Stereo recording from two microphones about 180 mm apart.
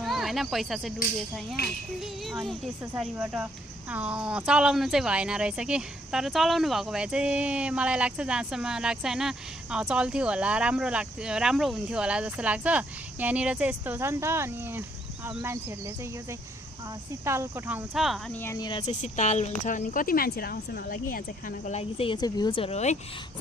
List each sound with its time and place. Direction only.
0.0 s speech: centre (ahead or behind)
1.6 s speech: 60° left (ahead or behind)
2.0 s a woman's voice: centre (ahead or behind)
17.2 s speech: 15° right (ahead or behind)
18.3 s speech: 15° left (ahead or behind)
18.9 s speech: 40° left (ahead or behind)